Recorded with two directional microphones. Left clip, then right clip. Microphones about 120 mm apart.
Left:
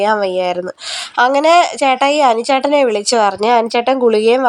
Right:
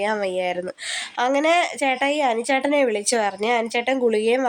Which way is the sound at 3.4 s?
35° left (ahead or behind).